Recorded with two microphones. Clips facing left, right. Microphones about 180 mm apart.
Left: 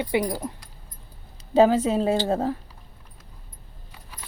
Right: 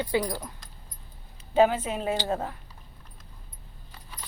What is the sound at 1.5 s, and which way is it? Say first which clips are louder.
Speech: left 4 dB; 35° left (ahead or behind).